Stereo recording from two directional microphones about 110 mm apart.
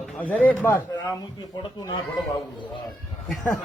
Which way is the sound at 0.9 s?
35° left (ahead or behind).